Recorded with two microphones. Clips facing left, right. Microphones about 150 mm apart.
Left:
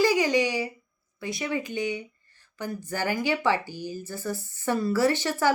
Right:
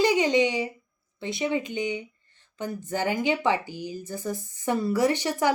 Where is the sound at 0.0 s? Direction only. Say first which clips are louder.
Right 1 dB; 20° right (ahead or behind).